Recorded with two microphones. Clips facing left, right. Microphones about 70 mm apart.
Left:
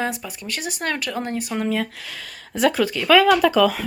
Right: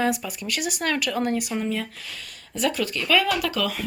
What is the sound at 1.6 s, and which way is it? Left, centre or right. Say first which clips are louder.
Speech: left 4 dB; left.